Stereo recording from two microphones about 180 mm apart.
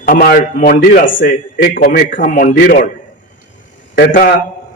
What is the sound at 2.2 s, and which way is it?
Speech, 50° left (ahead or behind).